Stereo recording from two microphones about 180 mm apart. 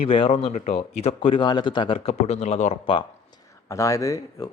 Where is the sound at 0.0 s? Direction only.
30° left (ahead or behind).